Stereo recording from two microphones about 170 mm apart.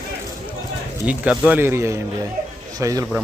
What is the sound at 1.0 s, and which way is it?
Speech, 10° right (ahead or behind).